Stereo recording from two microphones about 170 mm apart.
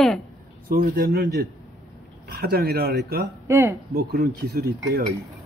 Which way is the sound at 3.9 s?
65° right (ahead or behind).